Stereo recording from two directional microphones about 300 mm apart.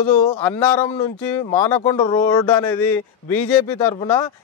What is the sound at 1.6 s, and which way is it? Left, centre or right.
Speech, centre.